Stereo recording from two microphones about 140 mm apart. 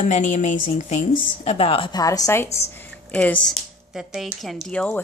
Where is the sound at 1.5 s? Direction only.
45° left (ahead or behind).